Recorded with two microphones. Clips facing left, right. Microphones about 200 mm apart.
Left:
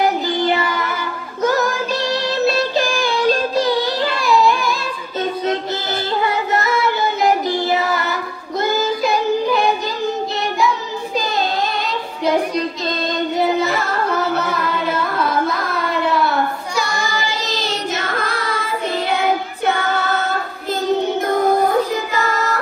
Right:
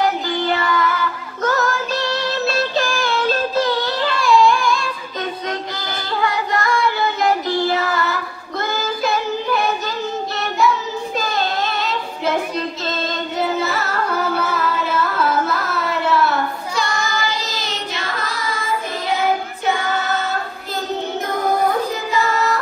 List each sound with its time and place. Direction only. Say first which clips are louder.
0.5 s child singing: left 1 dB; 20° left (ahead or behind)
1.4 s music: left 2 dB; 15° left (ahead or behind)
4.2 s music: right 2 dB; centre (ahead or behind)
6.2 s music: right 1 dB; 25° left (ahead or behind)
7.2 s child singing: left 1 dB; 20° left (ahead or behind)
13.6 s music: left 2 dB; 5° right (ahead or behind)
17.9 s singing: left 4 dB; 50° left (ahead or behind)